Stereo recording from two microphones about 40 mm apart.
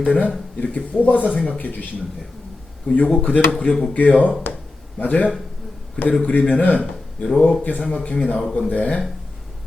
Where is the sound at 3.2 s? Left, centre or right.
Left.